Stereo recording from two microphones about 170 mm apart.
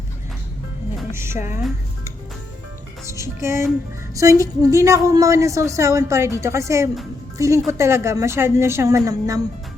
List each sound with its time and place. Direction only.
1.1 s a woman's voice: 15° right (ahead or behind)
3.1 s a woman's voice: 15° right (ahead or behind)